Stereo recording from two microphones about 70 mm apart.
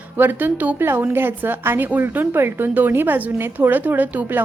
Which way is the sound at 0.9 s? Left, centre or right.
Right.